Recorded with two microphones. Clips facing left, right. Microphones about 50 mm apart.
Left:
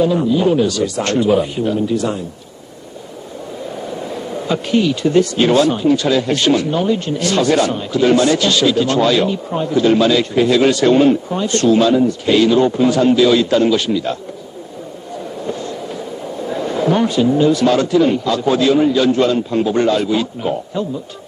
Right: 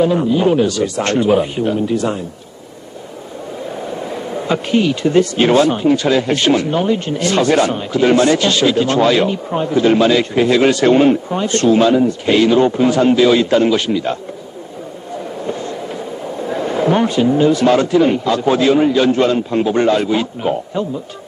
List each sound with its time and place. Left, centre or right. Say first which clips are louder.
0.0 s speech: right 1 dB; right
4.0 s speech: right 1 dB; right
15.4 s a sound: even; right
16.4 s speech: right 1 dB; right